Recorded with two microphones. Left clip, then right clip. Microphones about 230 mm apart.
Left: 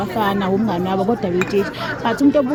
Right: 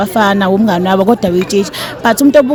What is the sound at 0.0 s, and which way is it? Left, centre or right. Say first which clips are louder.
Speech: right 8 dB; right.